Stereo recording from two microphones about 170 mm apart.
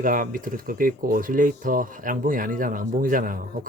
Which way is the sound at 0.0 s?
55° right (ahead or behind).